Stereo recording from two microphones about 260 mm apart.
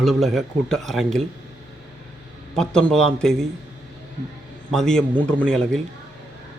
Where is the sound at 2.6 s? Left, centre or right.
Centre.